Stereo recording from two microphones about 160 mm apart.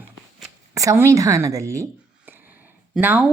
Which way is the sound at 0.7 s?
20° right (ahead or behind).